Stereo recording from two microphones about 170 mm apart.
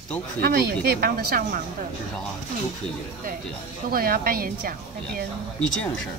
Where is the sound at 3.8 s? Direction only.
60° right (ahead or behind).